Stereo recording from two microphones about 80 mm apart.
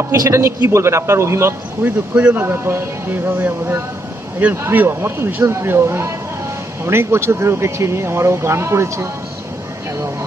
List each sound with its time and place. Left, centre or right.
0.1 s speech: right
2.1 s a man's voice: centre
2.4 s speech: right
4.7 s speech: right